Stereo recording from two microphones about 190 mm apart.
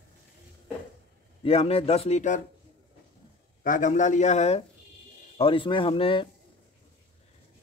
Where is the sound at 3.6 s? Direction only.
45° left (ahead or behind).